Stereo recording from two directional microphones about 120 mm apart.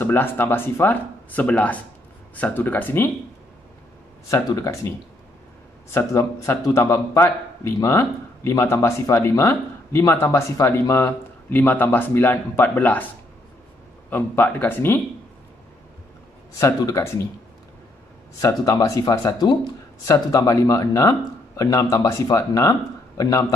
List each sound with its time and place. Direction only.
0.0 s speech: 15° left (ahead or behind)
4.3 s speech: 25° left (ahead or behind)
14.1 s speech: 15° left (ahead or behind)
16.5 s speech: 25° left (ahead or behind)
18.4 s speech: 30° left (ahead or behind)